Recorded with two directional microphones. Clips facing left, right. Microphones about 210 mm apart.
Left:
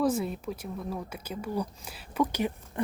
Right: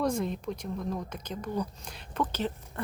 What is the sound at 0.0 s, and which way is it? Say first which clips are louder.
Speech: left 2 dB; 5° left (ahead or behind).